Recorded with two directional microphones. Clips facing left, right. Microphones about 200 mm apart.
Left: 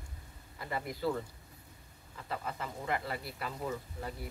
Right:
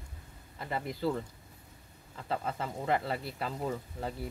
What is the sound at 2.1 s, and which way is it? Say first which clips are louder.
Speech: right 5 dB; 30° right (ahead or behind).